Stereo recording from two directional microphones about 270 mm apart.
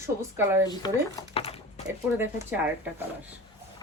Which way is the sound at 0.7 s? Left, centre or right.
Centre.